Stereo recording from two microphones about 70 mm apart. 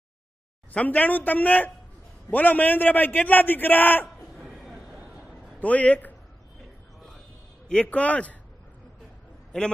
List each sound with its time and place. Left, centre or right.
0.7 s a man's voice: left
4.4 s a sound: centre
5.6 s a man's voice: left
7.6 s a man's voice: centre